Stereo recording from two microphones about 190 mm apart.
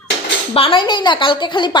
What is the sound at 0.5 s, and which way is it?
A woman's voice, 25° left (ahead or behind).